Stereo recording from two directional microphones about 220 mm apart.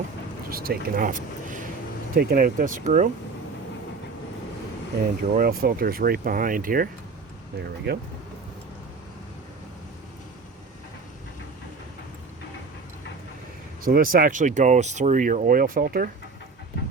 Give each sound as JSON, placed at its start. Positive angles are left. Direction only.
{"t": 0.5, "sound": "speech", "side_deg": -40}
{"t": 5.3, "sound": "speech", "side_deg": -40}
{"t": 7.9, "sound": "speech", "side_deg": -45}
{"t": 13.8, "sound": "speech", "side_deg": -40}